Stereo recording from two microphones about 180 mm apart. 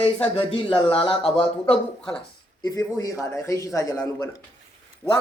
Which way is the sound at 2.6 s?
20° left (ahead or behind).